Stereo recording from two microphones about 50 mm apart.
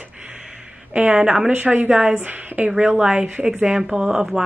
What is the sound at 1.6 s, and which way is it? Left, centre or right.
A woman's voice, right.